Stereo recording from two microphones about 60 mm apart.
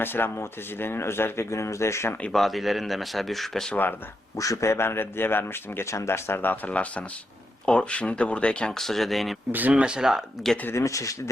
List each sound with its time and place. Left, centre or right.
0.0 s speech: left
2.3 s speech: centre
4.4 s speech: left
5.8 s speech: left; by 8.7 s centre
8.8 s speech: centre
9.5 s speech: right
9.8 s speech: centre
10.8 s speech: left